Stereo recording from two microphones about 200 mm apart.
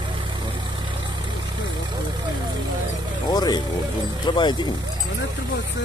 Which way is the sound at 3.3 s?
20° left (ahead or behind).